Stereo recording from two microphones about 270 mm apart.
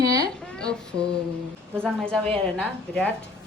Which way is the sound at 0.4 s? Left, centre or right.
Centre.